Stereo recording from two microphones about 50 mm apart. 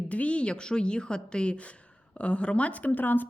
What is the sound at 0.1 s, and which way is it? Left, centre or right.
A woman's voice, left.